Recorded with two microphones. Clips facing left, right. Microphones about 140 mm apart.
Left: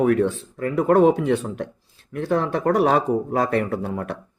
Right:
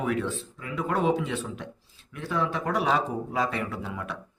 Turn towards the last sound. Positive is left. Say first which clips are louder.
# left 8 dB
turn(degrees=50)  # may be behind; listen again after turning